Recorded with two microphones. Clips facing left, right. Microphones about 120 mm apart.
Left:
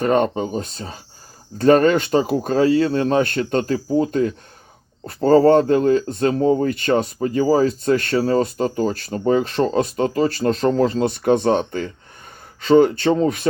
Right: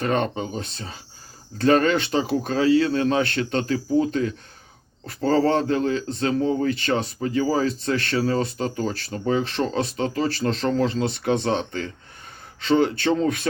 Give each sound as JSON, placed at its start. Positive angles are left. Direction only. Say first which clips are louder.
{"t": 0.0, "sound": "speech", "louder": "left 6 dB", "side_deg": 40}